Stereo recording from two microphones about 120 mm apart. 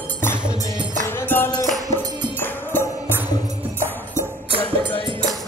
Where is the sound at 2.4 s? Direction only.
15° left (ahead or behind).